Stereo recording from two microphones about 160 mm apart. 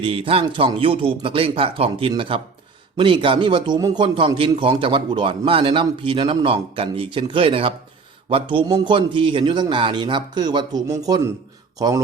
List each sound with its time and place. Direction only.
0.0 s a man's voice: 35° right (ahead or behind)